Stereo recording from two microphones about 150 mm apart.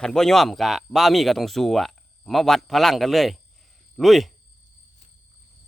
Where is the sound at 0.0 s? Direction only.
5° left (ahead or behind).